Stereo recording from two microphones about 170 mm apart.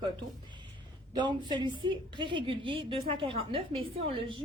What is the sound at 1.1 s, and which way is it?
A woman's voice, 25° right (ahead or behind).